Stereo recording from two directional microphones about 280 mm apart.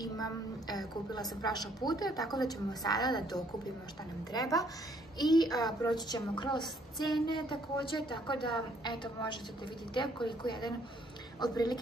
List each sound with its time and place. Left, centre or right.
0.0 s a woman's voice: centre